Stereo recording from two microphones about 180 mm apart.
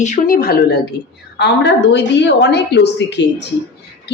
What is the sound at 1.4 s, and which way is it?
A woman's voice, 75° left (ahead or behind).